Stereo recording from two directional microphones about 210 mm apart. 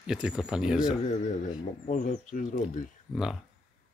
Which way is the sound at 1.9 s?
35° left (ahead or behind).